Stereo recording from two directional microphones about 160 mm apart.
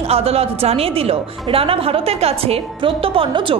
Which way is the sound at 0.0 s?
40° right (ahead or behind).